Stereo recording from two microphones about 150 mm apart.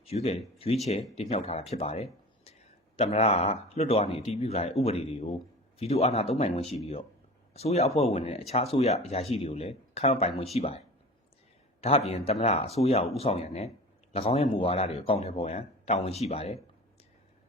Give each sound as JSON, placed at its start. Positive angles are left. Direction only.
{"t": 0.0, "sound": "speech", "side_deg": 45}
{"t": 11.8, "sound": "speech", "side_deg": 45}